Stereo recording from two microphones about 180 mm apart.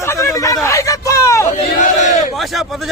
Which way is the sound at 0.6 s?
15° left (ahead or behind).